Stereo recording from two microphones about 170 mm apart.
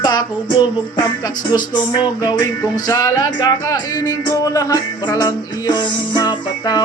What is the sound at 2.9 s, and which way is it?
Music, 20° left (ahead or behind).